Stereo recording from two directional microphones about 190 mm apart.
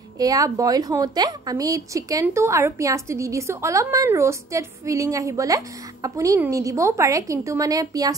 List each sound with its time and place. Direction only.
0.2 s a woman's voice: 20° right (ahead or behind)